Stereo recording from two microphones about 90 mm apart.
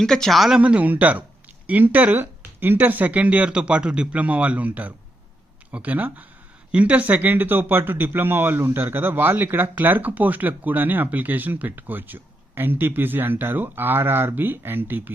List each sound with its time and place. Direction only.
0.0 s speech: 5° left (ahead or behind)
0.6 s speech: 15° right (ahead or behind)